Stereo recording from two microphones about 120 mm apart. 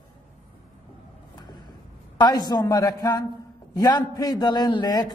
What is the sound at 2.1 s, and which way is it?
A woman's voice, 35° left (ahead or behind).